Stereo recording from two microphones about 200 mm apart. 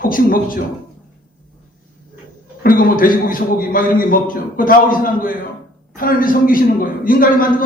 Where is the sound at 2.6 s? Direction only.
45° left (ahead or behind).